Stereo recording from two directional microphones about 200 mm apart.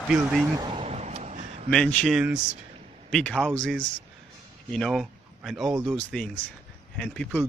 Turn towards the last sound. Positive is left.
turn(degrees=5)  # may be behind; listen again after turning